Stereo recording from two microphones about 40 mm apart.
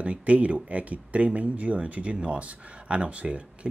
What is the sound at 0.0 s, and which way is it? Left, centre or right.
Speech, right.